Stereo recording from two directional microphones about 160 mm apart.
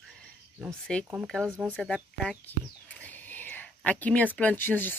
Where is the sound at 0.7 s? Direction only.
5° left (ahead or behind).